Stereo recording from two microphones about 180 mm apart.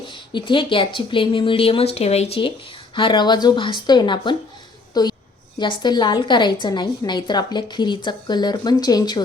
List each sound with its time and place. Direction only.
0.1 s a woman's voice: 25° left (ahead or behind)